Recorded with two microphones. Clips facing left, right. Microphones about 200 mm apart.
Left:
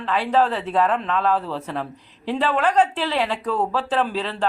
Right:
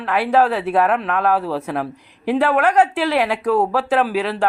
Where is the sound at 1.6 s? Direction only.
10° right (ahead or behind).